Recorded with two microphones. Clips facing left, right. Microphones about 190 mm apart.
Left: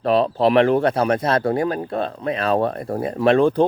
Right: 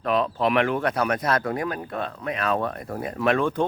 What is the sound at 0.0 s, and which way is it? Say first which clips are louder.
Speech: left 6 dB; 35° left (ahead or behind).